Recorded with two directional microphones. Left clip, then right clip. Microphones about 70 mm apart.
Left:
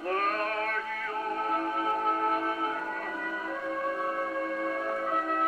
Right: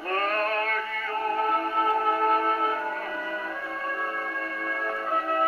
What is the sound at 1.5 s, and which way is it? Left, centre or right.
Music, centre.